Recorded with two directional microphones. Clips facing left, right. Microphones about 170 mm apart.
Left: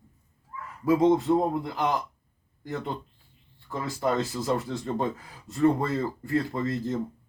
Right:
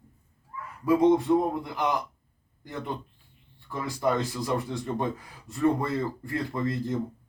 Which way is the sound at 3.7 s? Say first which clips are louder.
Even; 20° left (ahead or behind).